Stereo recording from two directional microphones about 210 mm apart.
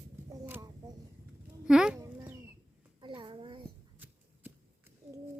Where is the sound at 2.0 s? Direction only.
15° right (ahead or behind).